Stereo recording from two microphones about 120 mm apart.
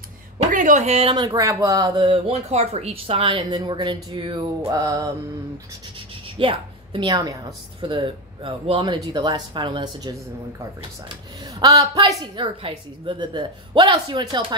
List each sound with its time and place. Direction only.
0.4 s speech: 90° right; by 1.1 s 60° right (ahead or behind)
1.1 s speech: 30° right (ahead or behind)
4.6 s a woman's voice: 30° right (ahead or behind)
6.3 s a sound: 45° right (ahead or behind)
7.1 s a woman's voice: 30° right (ahead or behind)
7.8 s a woman's voice: 45° right (ahead or behind)
11.6 s a woman's voice: 30° right (ahead or behind)